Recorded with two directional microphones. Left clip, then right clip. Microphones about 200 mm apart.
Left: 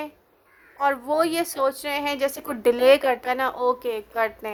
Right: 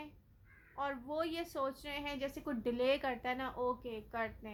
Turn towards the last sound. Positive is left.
turn(degrees=50)  # may be behind; listen again after turning